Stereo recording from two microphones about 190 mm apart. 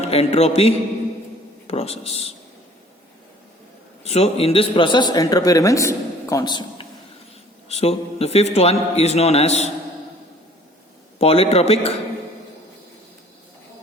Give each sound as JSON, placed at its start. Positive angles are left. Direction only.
{"t": 0.1, "sound": "a man's voice", "side_deg": 30}
{"t": 4.0, "sound": "a man's voice", "side_deg": 35}
{"t": 7.7, "sound": "a man's voice", "side_deg": 35}
{"t": 11.2, "sound": "a man's voice", "side_deg": 30}